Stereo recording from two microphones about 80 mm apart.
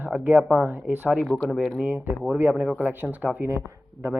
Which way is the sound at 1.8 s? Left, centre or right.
Right.